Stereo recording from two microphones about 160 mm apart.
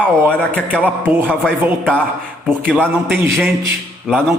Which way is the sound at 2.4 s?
10° right (ahead or behind).